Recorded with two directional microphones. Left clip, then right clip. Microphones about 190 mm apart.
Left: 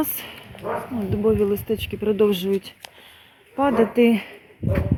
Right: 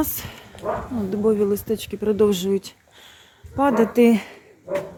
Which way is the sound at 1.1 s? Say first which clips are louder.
Even; 5° right (ahead or behind).